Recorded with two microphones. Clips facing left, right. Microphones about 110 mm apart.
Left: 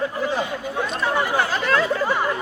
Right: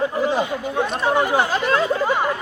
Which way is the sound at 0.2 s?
20° right (ahead or behind).